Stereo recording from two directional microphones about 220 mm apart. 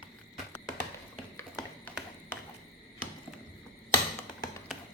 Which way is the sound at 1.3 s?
10° left (ahead or behind).